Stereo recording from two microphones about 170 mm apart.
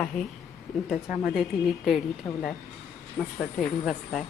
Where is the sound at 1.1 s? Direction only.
50° left (ahead or behind).